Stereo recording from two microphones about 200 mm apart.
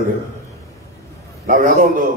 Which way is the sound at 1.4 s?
40° right (ahead or behind).